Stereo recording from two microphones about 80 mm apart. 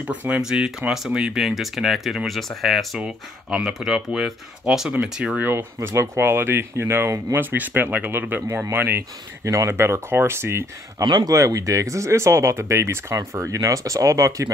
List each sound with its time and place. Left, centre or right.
0.1 s speech: centre
3.0 s speech: centre
5.4 s speech: right
9.4 s speech: right
11.1 s speech: right
11.3 s speech: right